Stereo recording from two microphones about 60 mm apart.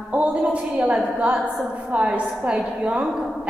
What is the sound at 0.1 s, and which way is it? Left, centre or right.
A woman's voice, centre.